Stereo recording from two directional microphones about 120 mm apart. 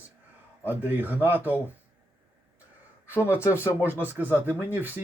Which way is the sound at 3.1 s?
20° left (ahead or behind).